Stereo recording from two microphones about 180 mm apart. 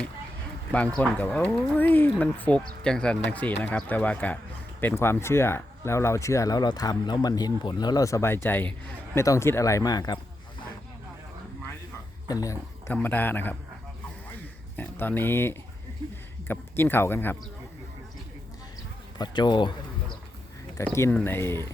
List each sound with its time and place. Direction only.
0.9 s speech: 5° left (ahead or behind); by 10.2 s 20° left (ahead or behind)
12.3 s speech: 20° left (ahead or behind)
14.8 s speech: 10° left (ahead or behind)
19.2 s speech: 25° left (ahead or behind)
20.7 s speech: 15° left (ahead or behind)